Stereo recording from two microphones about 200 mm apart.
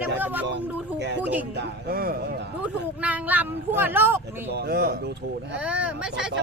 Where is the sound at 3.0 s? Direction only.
10° right (ahead or behind).